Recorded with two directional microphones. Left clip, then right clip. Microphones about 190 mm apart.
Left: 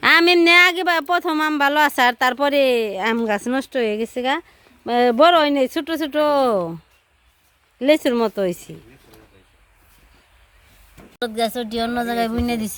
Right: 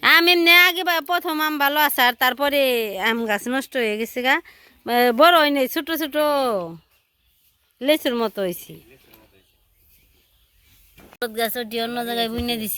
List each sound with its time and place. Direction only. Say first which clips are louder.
0.0 s speech: left 1 dB; centre (ahead or behind)
7.8 s speech: left 3 dB; centre (ahead or behind)
11.2 s speech: left 2 dB; centre (ahead or behind)